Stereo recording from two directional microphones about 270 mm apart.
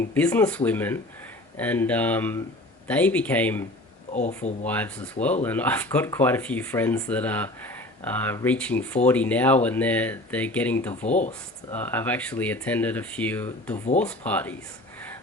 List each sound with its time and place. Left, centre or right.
0.1 s speech: centre
4.1 s speech: left
4.6 s speech: centre
11.1 s speech: left
11.7 s speech: centre